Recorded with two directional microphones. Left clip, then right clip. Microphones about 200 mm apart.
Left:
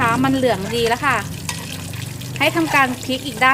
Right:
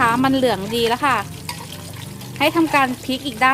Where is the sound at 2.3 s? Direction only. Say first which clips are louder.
Even; 35° right (ahead or behind).